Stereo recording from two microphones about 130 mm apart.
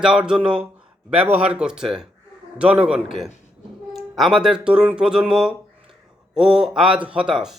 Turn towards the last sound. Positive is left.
turn(degrees=-5)  # may be behind; listen again after turning